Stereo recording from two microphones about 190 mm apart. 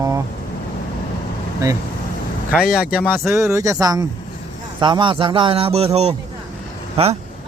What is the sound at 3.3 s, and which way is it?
A man's voice, 15° right (ahead or behind).